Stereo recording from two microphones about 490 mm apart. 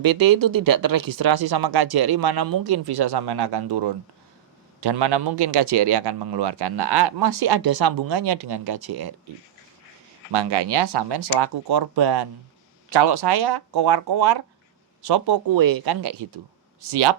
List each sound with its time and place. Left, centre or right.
0.0 s speech: right
10.3 s speech: right